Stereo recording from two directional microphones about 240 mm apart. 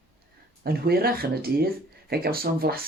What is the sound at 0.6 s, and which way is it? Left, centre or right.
Speech, right.